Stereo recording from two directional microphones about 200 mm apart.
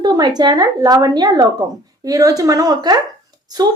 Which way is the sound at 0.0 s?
20° right (ahead or behind).